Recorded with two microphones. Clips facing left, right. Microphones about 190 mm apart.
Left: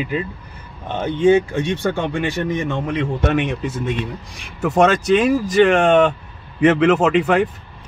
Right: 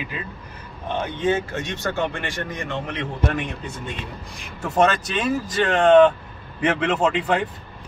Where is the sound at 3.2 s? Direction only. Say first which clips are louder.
Left 5 dB; 80° left.